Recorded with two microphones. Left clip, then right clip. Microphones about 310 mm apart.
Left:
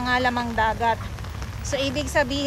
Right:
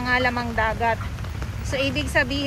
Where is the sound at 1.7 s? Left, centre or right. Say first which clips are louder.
Right 1 dB; left.